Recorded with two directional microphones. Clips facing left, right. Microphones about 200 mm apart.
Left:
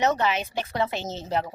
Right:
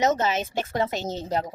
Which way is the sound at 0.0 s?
40° right (ahead or behind).